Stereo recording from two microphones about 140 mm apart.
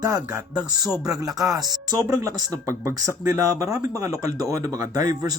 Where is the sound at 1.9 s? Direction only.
25° right (ahead or behind).